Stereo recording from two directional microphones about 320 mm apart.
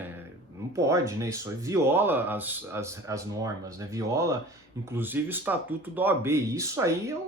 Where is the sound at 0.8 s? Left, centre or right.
Centre.